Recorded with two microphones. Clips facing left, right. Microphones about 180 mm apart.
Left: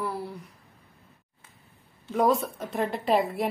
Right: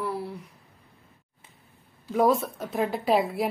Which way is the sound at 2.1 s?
Centre (ahead or behind).